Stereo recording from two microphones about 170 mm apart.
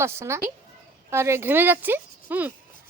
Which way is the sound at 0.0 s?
15° right (ahead or behind).